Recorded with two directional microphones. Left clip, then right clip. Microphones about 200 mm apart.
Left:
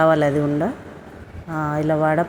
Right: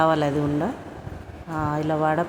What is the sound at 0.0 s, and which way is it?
A woman's voice, 10° left (ahead or behind).